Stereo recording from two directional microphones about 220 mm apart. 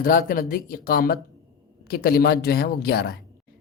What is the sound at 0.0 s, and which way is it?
Speech, 40° left (ahead or behind).